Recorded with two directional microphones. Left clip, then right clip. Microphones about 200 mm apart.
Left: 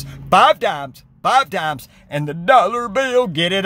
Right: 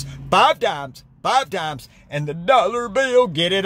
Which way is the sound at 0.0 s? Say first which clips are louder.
Left 3 dB; 10° left (ahead or behind).